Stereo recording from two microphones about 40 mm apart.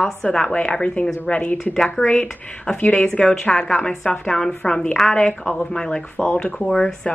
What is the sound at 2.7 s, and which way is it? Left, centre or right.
Speech, left.